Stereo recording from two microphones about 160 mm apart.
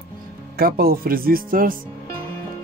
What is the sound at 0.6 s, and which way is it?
Speech, 70° right (ahead or behind).